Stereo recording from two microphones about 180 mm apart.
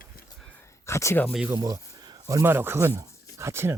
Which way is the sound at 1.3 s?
5° right (ahead or behind).